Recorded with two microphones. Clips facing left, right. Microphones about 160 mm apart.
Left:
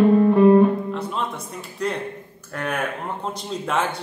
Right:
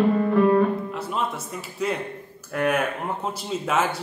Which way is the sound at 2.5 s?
5° right (ahead or behind).